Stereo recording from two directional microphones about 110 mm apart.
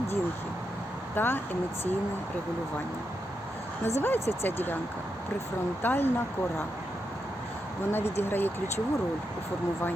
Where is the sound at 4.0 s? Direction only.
20° left (ahead or behind).